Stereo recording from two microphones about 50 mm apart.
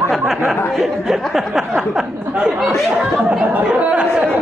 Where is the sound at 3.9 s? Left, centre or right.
Centre.